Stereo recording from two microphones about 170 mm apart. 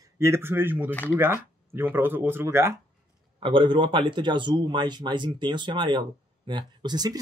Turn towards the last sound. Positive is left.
turn(degrees=-25)  # may be behind; listen again after turning